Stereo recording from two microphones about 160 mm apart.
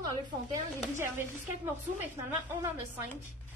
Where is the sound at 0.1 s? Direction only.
20° right (ahead or behind).